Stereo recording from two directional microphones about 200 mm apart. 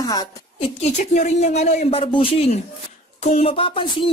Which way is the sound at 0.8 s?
35° left (ahead or behind).